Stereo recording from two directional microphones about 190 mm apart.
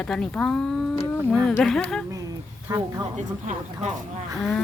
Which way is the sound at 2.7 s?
15° right (ahead or behind).